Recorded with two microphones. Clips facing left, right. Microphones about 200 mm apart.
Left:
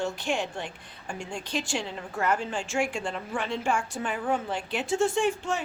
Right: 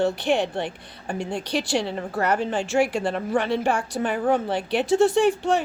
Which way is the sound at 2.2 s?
65° right (ahead or behind).